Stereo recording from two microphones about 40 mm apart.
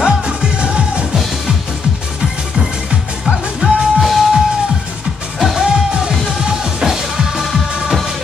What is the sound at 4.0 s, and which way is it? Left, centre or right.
Music, centre.